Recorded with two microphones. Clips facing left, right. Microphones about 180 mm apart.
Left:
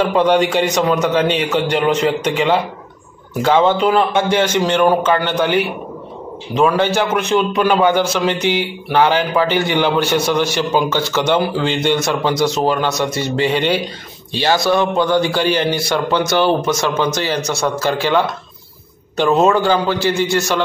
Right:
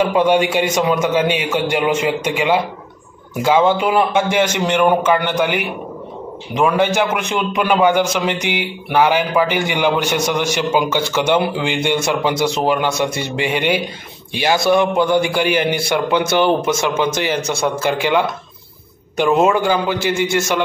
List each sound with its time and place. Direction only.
0.0 s a man's voice: 10° right (ahead or behind)